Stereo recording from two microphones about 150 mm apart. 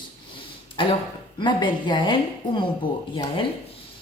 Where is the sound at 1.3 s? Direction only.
30° left (ahead or behind).